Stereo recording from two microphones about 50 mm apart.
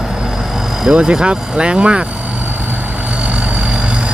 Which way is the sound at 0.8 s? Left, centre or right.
Centre.